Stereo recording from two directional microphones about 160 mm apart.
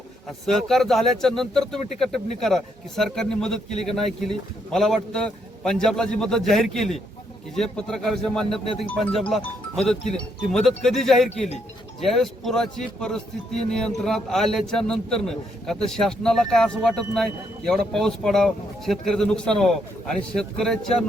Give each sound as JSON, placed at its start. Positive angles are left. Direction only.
{"t": 0.3, "sound": "speech", "side_deg": 0}
{"t": 11.3, "sound": "speech", "side_deg": 45}
{"t": 11.9, "sound": "speech", "side_deg": 0}